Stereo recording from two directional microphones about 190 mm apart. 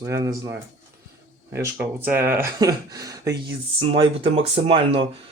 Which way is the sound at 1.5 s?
15° right (ahead or behind).